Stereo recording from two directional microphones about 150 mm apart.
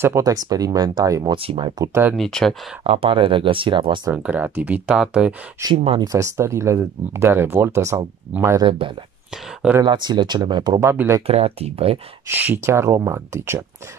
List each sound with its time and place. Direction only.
0.0 s speech: 20° right (ahead or behind)
1.3 s speech: 35° right (ahead or behind)
1.8 s speech: 15° right (ahead or behind)
2.1 s speech: 5° left (ahead or behind)
2.8 s speech: 35° right (ahead or behind)
4.1 s speech: 10° right (ahead or behind)
5.9 s speech: 20° right (ahead or behind)
8.6 s speech: 35° right (ahead or behind)
9.3 s speech: 5° right (ahead or behind)
9.8 s speech: 30° right (ahead or behind)
11.2 s speech: 40° right (ahead or behind)
12.3 s speech: 15° right (ahead or behind)